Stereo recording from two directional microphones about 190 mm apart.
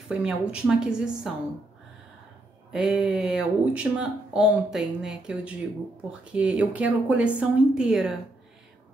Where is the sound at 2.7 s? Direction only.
5° right (ahead or behind).